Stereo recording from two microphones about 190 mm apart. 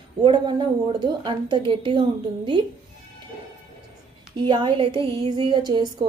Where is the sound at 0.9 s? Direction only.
25° right (ahead or behind).